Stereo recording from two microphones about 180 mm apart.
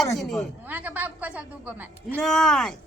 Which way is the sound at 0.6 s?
10° right (ahead or behind).